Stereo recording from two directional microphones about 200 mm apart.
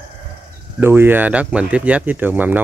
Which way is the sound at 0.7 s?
10° right (ahead or behind).